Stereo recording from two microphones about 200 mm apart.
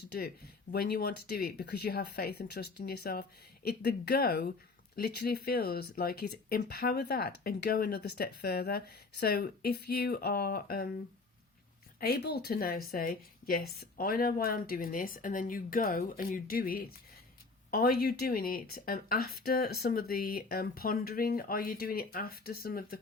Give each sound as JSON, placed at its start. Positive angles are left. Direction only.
{"t": 0.7, "sound": "speech", "side_deg": 50}
{"t": 11.9, "sound": "speech", "side_deg": 50}